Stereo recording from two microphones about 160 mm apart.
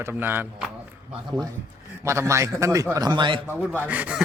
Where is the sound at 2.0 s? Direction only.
15° right (ahead or behind).